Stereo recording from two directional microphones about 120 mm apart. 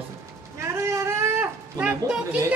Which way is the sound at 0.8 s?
20° right (ahead or behind).